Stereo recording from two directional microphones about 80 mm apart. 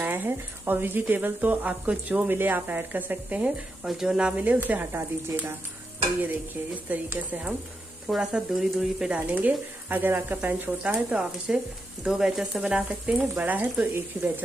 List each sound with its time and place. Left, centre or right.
0.0 s speech: right
3.8 s speech: centre; by 5.5 s right
6.9 s speech: centre
8.1 s speech: centre; by 14.4 s right